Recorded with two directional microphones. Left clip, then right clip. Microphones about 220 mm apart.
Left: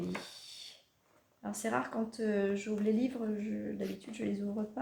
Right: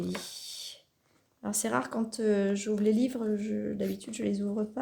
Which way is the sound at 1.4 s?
55° right (ahead or behind).